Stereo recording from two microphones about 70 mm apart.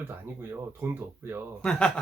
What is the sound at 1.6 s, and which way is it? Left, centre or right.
Speech, centre.